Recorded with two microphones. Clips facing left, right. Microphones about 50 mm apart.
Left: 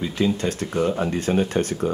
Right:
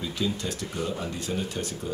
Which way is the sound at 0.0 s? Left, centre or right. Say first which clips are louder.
Left 7 dB; left.